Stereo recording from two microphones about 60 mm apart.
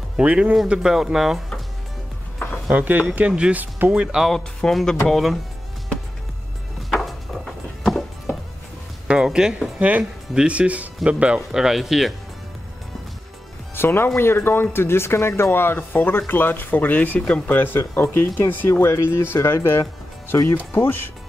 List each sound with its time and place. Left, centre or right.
0.2 s speech: right
0.7 s speech: centre
2.7 s speech: right
4.6 s speech: centre
6.9 s music: centre
9.0 s speech: centre
9.8 s speech: right
11.5 s speech: centre
13.7 s speech: left
18.7 s speech: left